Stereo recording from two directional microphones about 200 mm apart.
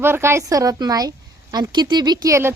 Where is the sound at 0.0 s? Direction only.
10° right (ahead or behind).